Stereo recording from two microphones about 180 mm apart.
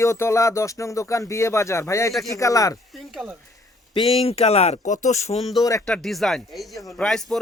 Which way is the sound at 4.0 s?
30° left (ahead or behind).